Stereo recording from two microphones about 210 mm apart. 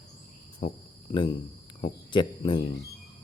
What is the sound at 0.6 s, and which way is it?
Speech, 30° left (ahead or behind).